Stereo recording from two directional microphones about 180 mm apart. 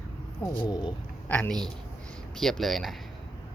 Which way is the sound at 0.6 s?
25° left (ahead or behind).